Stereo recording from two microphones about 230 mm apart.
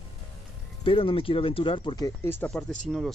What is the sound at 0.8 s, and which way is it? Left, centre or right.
Speech, left.